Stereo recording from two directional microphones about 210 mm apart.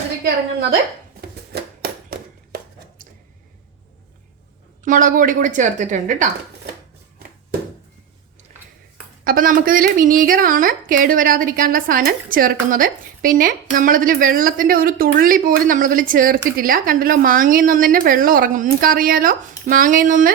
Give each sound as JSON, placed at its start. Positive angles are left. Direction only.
{"t": 0.3, "sound": "a woman's voice", "side_deg": -50}
{"t": 1.5, "sound": "a sound", "side_deg": -45}
{"t": 4.8, "sound": "a woman's voice", "side_deg": -40}
{"t": 9.2, "sound": "a woman's voice", "side_deg": -40}